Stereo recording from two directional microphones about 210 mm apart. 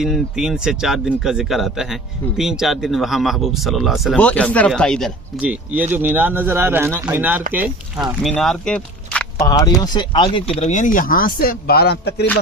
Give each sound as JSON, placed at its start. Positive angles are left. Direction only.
{"t": 0.0, "sound": "speech", "side_deg": -5}
{"t": 9.5, "sound": "speech", "side_deg": 20}